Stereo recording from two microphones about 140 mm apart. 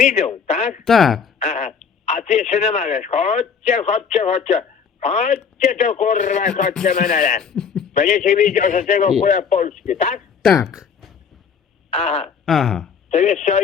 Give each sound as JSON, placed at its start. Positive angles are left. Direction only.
{"t": 0.0, "sound": "speech", "side_deg": 55}
{"t": 0.9, "sound": "speech", "side_deg": 0}
{"t": 1.4, "sound": "speech", "side_deg": 55}
{"t": 6.8, "sound": "speech", "side_deg": 80}
{"t": 7.4, "sound": "speech", "side_deg": 5}
{"t": 7.9, "sound": "speech", "side_deg": 60}
{"t": 10.2, "sound": "a sound", "side_deg": 0}
{"t": 11.9, "sound": "a sound", "side_deg": 50}
{"t": 12.5, "sound": "speech", "side_deg": 0}
{"t": 13.1, "sound": "speech", "side_deg": 55}